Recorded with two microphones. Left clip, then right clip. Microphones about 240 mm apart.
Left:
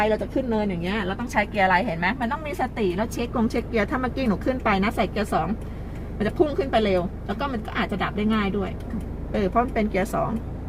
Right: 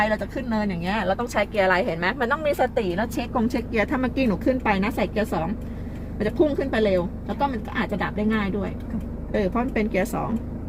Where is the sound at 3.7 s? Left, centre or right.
Right.